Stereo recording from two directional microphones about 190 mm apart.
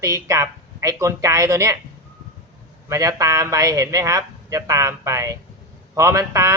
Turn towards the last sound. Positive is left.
turn(degrees=-15)  # may be behind; listen again after turning